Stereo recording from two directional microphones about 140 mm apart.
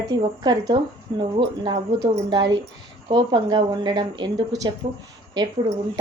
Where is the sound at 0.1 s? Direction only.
30° right (ahead or behind).